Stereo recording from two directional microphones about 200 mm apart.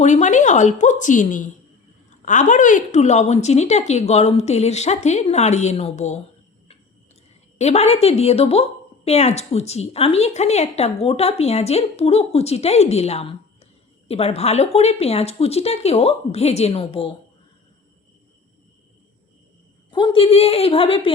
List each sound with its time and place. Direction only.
0.0 s a woman's voice: 35° left (ahead or behind)
7.6 s a woman's voice: 30° left (ahead or behind)
19.9 s a woman's voice: 20° left (ahead or behind)